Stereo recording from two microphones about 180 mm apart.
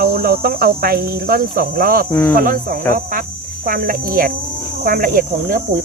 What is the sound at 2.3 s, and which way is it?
Speech, 50° right (ahead or behind).